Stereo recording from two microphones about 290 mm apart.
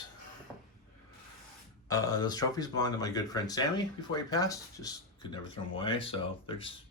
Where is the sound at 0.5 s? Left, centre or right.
Centre.